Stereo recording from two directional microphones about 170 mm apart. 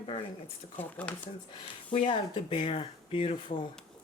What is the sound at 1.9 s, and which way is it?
Speech, 30° left (ahead or behind).